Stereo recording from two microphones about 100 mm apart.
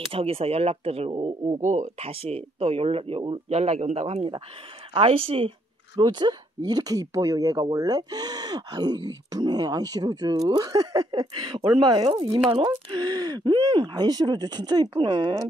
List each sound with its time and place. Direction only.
0.1 s speech: 75° right (ahead or behind)
2.0 s speech: 75° right (ahead or behind); by 4.3 s 90° right
4.9 s speech: 70° right (ahead or behind)
5.9 s speech: 50° right (ahead or behind)